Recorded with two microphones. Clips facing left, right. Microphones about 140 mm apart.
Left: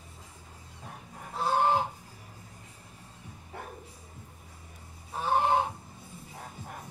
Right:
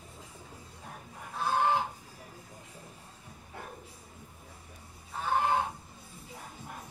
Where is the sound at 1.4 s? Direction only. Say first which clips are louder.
Left 2 dB; 30° left (ahead or behind).